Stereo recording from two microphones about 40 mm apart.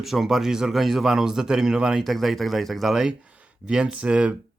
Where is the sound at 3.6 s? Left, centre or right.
Right.